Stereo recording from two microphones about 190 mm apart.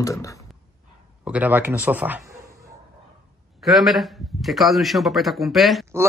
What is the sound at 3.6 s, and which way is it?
A man's voice, centre (ahead or behind).